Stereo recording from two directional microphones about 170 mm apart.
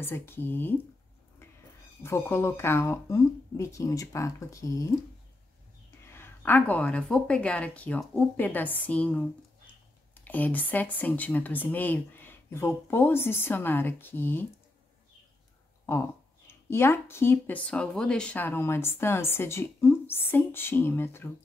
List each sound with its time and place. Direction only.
0.0 s speech: 15° left (ahead or behind)
2.0 s speech: 15° left (ahead or behind)
6.1 s speech: 15° left (ahead or behind)
16.4 s speech: 15° left (ahead or behind)